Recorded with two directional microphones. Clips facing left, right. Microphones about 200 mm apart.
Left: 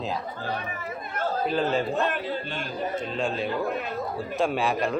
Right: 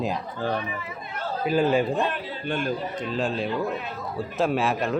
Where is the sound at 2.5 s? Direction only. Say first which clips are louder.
Right 8 dB; 55° right (ahead or behind).